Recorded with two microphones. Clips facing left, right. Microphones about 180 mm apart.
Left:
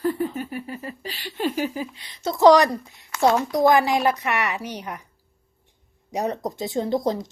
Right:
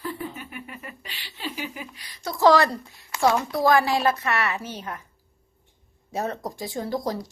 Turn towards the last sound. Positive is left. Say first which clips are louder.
# left 5 dB
turn(degrees=20)  # may be behind; listen again after turning